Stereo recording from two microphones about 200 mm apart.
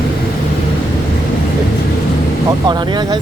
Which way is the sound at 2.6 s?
20° right (ahead or behind).